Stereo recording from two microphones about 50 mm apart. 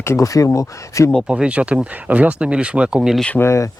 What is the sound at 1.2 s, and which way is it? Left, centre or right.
Speech, right.